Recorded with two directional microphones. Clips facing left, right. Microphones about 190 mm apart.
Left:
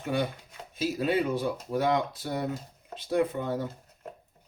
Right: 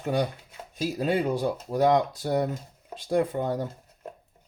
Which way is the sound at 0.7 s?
40° right (ahead or behind).